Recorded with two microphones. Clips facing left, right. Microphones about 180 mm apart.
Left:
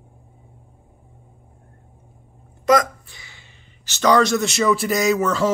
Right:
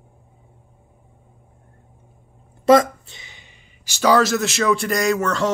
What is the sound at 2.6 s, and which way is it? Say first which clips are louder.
A man's voice: right 4 dB; 25° right (ahead or behind).